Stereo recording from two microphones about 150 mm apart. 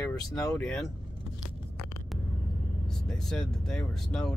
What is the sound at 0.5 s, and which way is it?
Speech, 5° left (ahead or behind).